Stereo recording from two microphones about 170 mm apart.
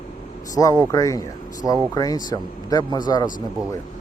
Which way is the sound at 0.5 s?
20° left (ahead or behind).